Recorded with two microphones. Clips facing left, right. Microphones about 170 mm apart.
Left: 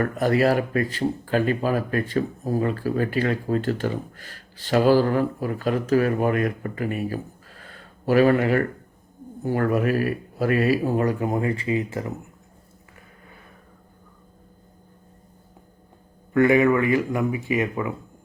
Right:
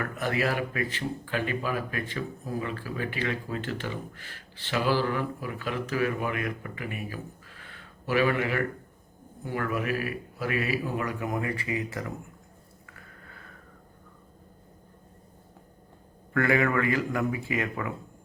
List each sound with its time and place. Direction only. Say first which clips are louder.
0.0 s speech: left 9 dB; 40° left (ahead or behind)
13.2 s a sound: left 3 dB; 20° left (ahead or behind)
16.3 s speech: left 7 dB; 20° left (ahead or behind)